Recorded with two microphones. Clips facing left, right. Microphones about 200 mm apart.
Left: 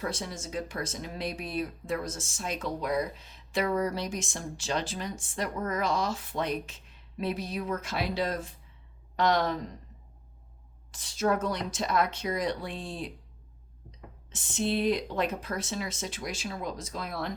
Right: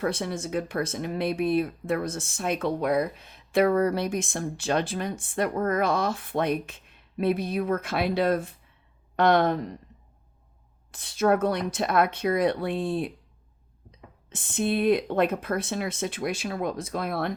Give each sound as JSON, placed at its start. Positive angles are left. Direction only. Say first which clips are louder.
{"t": 0.0, "sound": "speech", "louder": "right 7 dB", "side_deg": -60}
{"t": 10.9, "sound": "speech", "louder": "right 5 dB", "side_deg": -60}
{"t": 14.3, "sound": "speech", "louder": "right 3 dB", "side_deg": -55}